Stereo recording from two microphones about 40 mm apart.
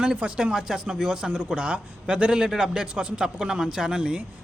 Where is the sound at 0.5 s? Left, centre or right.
Centre; by 2.3 s right.